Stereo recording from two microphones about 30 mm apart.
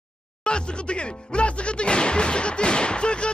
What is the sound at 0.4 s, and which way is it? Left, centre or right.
Music, left.